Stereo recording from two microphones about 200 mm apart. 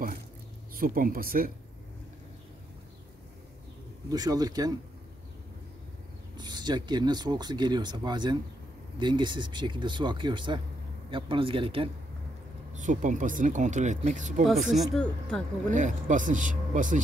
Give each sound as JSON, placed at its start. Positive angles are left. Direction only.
{"t": 0.7, "sound": "speech", "side_deg": -45}
{"t": 4.1, "sound": "speech", "side_deg": -20}
{"t": 6.3, "sound": "speech", "side_deg": -20}
{"t": 12.7, "sound": "speech", "side_deg": -40}
{"t": 14.4, "sound": "speech", "side_deg": 0}
{"t": 15.7, "sound": "speech", "side_deg": -40}